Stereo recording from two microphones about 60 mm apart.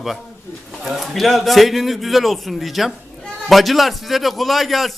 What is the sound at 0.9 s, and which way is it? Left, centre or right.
A man's voice, centre.